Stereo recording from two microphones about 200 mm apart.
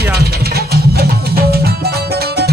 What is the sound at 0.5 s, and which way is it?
Music, 50° right (ahead or behind).